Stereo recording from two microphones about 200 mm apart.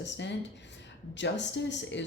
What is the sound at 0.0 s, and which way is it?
Speech, 60° left (ahead or behind).